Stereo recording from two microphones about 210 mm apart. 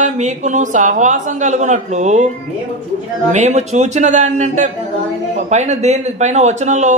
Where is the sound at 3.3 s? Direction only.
35° right (ahead or behind).